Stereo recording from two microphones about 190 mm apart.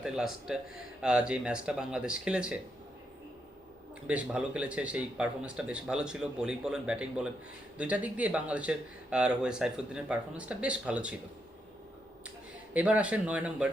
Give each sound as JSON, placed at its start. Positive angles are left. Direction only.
{"t": 0.0, "sound": "speech", "side_deg": -5}
{"t": 4.0, "sound": "speech", "side_deg": -5}
{"t": 12.7, "sound": "speech", "side_deg": -5}